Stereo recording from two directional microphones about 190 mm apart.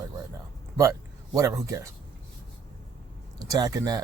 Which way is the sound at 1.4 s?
15° right (ahead or behind).